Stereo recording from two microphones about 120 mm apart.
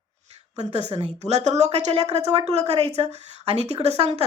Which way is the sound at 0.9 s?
55° right (ahead or behind).